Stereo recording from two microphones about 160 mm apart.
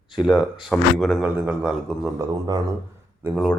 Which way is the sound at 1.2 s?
10° right (ahead or behind).